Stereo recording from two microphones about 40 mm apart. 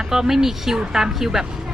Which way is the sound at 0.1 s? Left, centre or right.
Centre.